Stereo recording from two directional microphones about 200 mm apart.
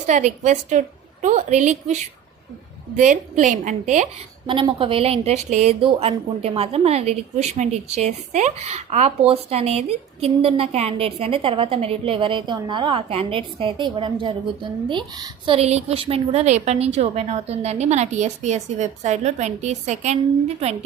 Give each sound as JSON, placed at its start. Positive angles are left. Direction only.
{"t": 0.1, "sound": "a woman's voice", "side_deg": -35}
{"t": 3.0, "sound": "a woman's voice", "side_deg": -40}
{"t": 4.4, "sound": "a woman's voice", "side_deg": -25}